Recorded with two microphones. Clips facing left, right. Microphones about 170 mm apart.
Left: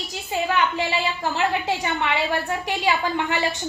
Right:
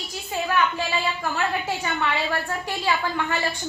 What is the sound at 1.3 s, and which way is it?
A woman's voice, 20° left (ahead or behind).